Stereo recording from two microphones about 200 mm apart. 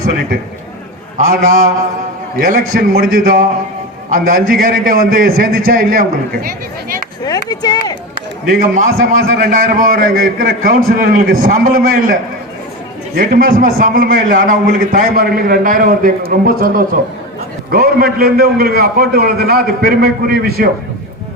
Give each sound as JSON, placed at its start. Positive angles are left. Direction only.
{"t": 1.3, "sound": "a man's voice", "side_deg": -45}
{"t": 7.3, "sound": "chop", "side_deg": 20}
{"t": 8.4, "sound": "a man's voice", "side_deg": -45}
{"t": 13.1, "sound": "a man's voice", "side_deg": -45}